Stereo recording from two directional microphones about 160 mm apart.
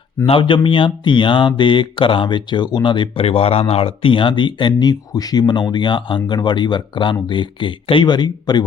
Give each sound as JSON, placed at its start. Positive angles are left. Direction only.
{"t": 0.3, "sound": "speech", "side_deg": 30}